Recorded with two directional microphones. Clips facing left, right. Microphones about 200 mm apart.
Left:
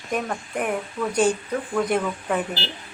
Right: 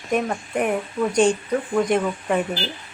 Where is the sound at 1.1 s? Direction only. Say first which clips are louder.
Right 2 dB; 5° left (ahead or behind).